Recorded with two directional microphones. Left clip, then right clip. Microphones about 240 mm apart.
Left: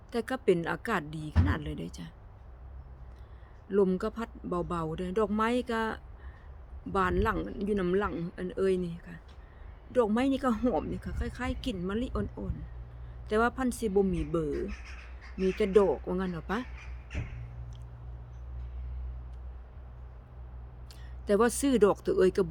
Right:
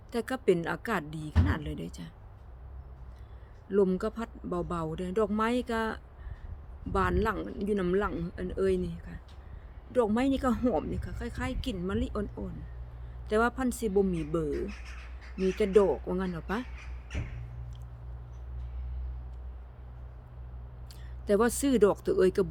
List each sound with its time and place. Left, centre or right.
0.1 s speech: centre
3.7 s speech: centre
17.1 s squawk: right
21.2 s speech: centre